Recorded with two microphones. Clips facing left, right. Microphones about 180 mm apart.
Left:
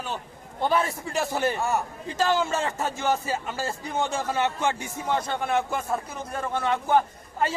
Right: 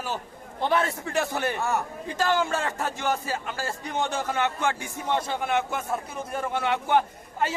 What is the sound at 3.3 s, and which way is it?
Speech, 15° left (ahead or behind).